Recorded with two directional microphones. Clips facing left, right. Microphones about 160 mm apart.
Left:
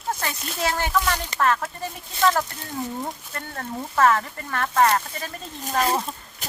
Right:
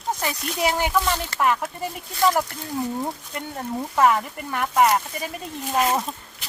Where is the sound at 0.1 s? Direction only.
15° right (ahead or behind).